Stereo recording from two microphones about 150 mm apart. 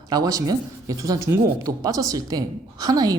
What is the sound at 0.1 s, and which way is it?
Speech, 25° right (ahead or behind).